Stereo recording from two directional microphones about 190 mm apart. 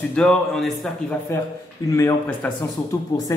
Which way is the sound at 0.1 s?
5° left (ahead or behind).